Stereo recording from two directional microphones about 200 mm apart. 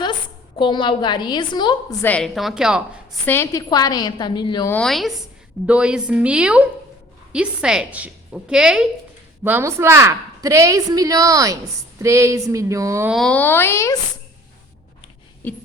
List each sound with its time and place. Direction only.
0.6 s a woman's voice: 25° left (ahead or behind); by 2.8 s 5° right (ahead or behind)
3.2 s a woman's voice: 10° left (ahead or behind)
4.7 s a woman's voice: centre (ahead or behind); by 13.1 s 15° right (ahead or behind)
13.1 s speech: centre (ahead or behind)